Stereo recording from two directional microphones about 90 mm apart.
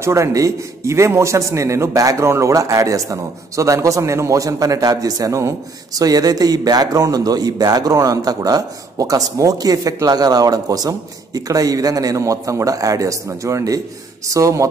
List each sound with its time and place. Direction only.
0.0 s a man's voice: 35° right (ahead or behind)